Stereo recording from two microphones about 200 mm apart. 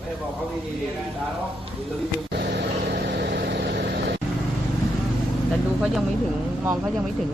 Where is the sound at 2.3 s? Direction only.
55° right (ahead or behind).